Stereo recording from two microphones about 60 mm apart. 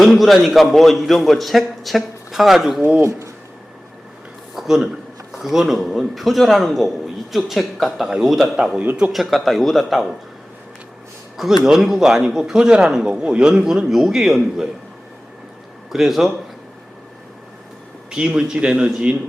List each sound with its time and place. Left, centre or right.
0.2 s a man's voice: centre
3.0 s speech: right
4.5 s a sound: centre
5.3 s a man's voice: centre
8.8 s speech: right
9.1 s a man's voice: centre
11.3 s a man's voice: centre
15.9 s a man's voice: centre
18.1 s a man's voice: centre